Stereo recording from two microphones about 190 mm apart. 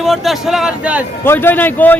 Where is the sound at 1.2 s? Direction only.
10° left (ahead or behind).